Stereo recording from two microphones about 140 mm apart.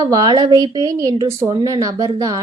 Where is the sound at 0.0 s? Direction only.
30° right (ahead or behind).